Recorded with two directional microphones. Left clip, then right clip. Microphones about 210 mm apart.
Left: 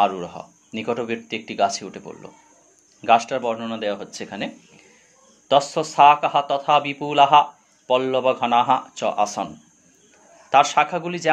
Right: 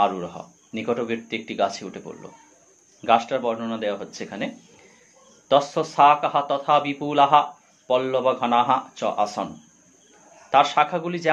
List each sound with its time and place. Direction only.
0.0 s speech: 30° left (ahead or behind)
5.5 s speech: 25° left (ahead or behind)
10.5 s speech: 30° left (ahead or behind)